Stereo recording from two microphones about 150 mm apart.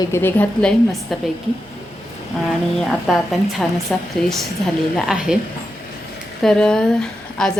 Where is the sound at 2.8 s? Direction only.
Centre (ahead or behind).